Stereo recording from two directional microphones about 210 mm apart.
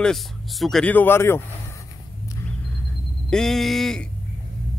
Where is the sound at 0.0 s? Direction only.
Centre (ahead or behind).